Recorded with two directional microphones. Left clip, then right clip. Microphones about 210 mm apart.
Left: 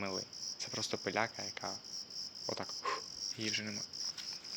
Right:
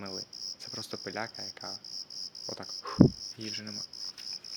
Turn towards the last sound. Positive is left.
turn(degrees=-15)  # may be behind; listen again after turning